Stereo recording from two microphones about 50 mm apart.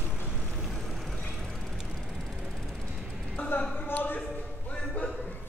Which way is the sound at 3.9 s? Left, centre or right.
Left.